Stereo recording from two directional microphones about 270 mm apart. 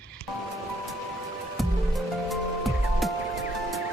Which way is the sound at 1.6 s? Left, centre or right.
Centre.